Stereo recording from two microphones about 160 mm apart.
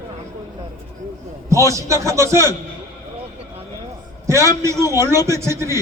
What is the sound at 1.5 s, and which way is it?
A man's voice, 20° right (ahead or behind).